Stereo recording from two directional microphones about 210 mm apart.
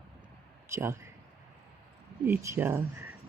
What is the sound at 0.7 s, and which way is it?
Speech, 10° right (ahead or behind).